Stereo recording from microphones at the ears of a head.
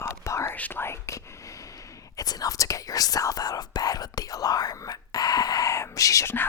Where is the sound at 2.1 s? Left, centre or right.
Left.